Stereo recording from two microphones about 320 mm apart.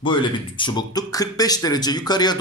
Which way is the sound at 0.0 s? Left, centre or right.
Centre.